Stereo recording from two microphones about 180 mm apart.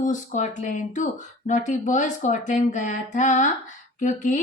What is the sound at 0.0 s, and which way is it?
A woman's voice, 45° left (ahead or behind).